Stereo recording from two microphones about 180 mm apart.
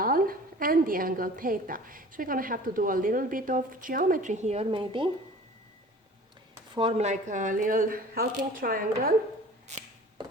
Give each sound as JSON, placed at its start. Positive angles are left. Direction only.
{"t": 0.0, "sound": "a woman's voice", "side_deg": -50}
{"t": 6.7, "sound": "a woman's voice", "side_deg": -35}